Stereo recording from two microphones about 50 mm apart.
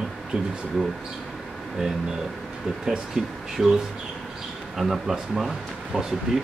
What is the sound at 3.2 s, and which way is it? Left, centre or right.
Speech, centre.